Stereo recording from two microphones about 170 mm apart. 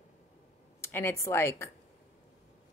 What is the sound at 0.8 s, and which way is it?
Speech, 15° left (ahead or behind).